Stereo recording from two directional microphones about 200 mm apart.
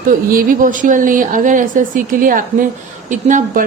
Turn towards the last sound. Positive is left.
turn(degrees=-40)  # may be behind; listen again after turning